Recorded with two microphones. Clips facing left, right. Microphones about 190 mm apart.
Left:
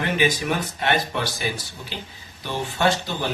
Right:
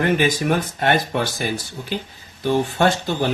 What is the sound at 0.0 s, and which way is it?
Speech, 50° right (ahead or behind).